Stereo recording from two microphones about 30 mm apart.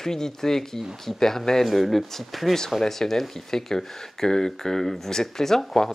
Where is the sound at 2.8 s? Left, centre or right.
Centre.